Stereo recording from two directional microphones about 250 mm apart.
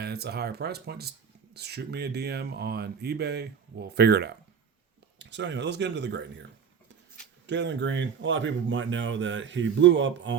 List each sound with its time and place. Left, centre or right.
0.0 s speech: right
7.4 s speech: right